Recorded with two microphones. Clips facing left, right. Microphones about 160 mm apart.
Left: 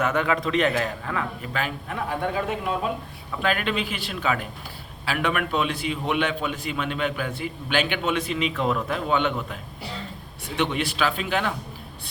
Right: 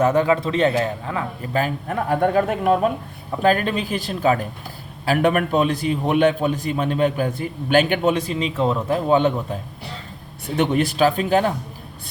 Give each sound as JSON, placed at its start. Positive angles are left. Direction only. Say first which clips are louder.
{"t": 0.0, "sound": "a man's voice", "louder": "right 6 dB", "side_deg": -30}
{"t": 1.4, "sound": "a man's voice", "louder": "right 6 dB", "side_deg": -40}
{"t": 3.4, "sound": "a man's voice", "louder": "right 6 dB", "side_deg": -40}
{"t": 10.6, "sound": "a man's voice", "louder": "right 7 dB", "side_deg": -45}